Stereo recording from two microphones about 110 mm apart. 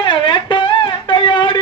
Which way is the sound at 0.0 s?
45° left (ahead or behind).